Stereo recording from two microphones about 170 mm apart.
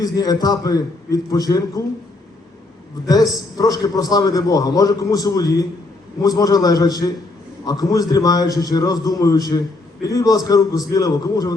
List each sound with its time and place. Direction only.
0.0 s a man's voice: 20° left (ahead or behind)
3.1 s a man's voice: 20° left (ahead or behind)